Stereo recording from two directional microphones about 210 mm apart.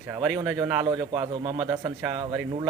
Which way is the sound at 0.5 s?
5° right (ahead or behind).